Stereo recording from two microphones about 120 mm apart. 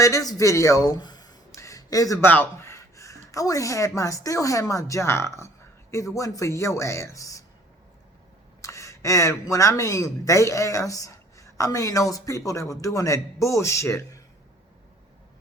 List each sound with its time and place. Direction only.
0.0 s a sound: 30° left (ahead or behind)
2.2 s a man's voice: 15° left (ahead or behind)
8.6 s a man's voice: 25° left (ahead or behind)